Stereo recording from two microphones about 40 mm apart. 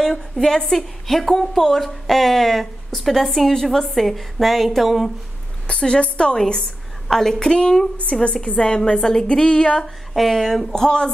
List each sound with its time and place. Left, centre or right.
0.0 s a woman's voice: centre
5.7 s a woman's voice: left; by 7.3 s centre
7.3 s speech: centre
8.1 s speech: left
8.5 s speech: centre
9.8 s speech: centre
10.7 s speech: centre